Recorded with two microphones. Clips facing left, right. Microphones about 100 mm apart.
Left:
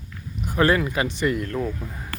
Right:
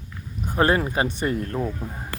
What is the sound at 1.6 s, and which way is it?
Speech, 20° right (ahead or behind).